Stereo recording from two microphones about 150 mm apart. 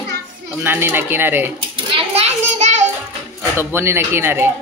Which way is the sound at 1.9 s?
40° right (ahead or behind).